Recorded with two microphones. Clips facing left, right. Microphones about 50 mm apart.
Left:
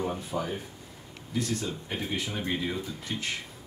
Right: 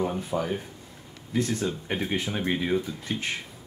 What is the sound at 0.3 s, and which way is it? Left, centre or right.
Speech, right.